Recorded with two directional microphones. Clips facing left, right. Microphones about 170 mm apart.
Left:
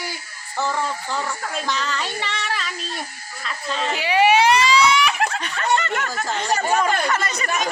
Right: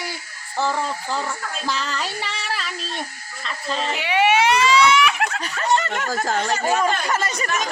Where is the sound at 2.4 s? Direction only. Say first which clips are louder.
Left 1 dB; 35° right (ahead or behind).